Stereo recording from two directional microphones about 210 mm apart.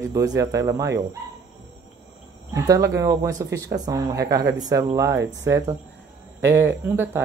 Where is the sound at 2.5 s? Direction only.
15° right (ahead or behind).